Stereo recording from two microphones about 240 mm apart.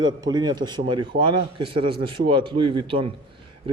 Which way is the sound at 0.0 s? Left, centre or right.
Centre.